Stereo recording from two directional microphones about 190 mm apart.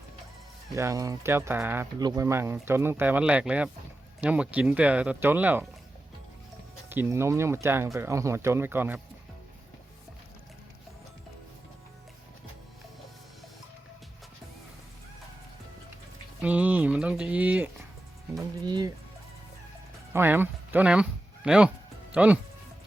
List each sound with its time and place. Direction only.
0.8 s speech: 15° right (ahead or behind)
6.9 s speech: 10° right (ahead or behind)
16.4 s speech: 10° right (ahead or behind)
18.3 s speech: 20° right (ahead or behind)
20.1 s speech: 10° right (ahead or behind)